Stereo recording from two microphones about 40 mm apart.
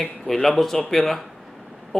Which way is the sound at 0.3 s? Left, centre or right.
Centre.